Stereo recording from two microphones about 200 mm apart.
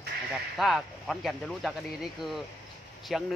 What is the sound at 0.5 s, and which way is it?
Speech, centre (ahead or behind).